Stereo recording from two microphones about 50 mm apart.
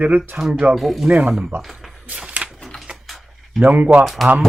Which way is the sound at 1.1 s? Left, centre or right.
Right.